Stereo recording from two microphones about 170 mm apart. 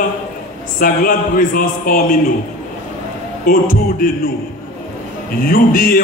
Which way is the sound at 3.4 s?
55° left (ahead or behind).